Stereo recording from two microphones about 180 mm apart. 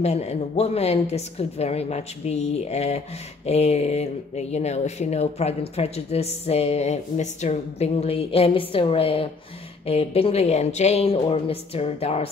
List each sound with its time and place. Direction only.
0.0 s speech: 35° left (ahead or behind)